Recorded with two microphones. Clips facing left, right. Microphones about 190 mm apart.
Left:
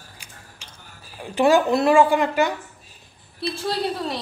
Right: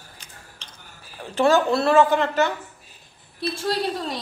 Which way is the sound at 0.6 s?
10° left (ahead or behind).